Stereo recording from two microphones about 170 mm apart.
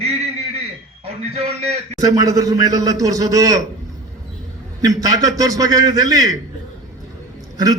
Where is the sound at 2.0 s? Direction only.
20° right (ahead or behind).